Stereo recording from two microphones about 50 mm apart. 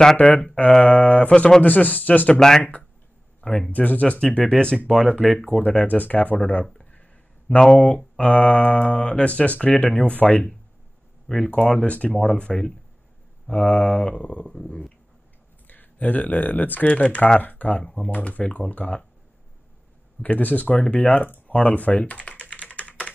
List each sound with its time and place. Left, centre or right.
0.2 s speech: left
2.3 s speech: centre
3.3 s a sound: centre
3.7 s speech: left; by 5.1 s centre
5.6 s speech: left
6.7 s a sound: left
7.5 s speech: left
11.8 s speech: left
15.6 s speech: left
20.2 s speech: left
21.5 s typing: left